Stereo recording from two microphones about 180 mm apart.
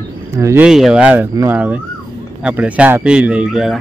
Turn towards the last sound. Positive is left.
turn(degrees=0)  # may be behind; listen again after turning